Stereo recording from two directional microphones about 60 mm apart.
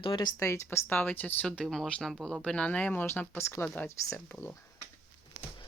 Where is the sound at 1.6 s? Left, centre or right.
Centre.